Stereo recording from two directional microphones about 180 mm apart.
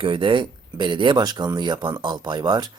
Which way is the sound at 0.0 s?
25° right (ahead or behind).